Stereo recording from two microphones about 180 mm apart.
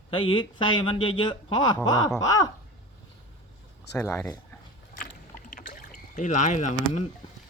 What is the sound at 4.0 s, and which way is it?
Speech, 15° left (ahead or behind).